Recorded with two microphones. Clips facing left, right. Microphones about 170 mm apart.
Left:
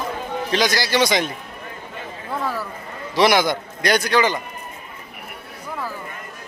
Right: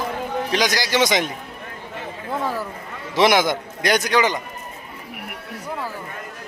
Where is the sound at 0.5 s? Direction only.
15° right (ahead or behind).